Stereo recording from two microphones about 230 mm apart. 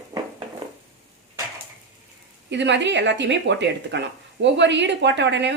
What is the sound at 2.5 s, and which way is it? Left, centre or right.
Speech, right.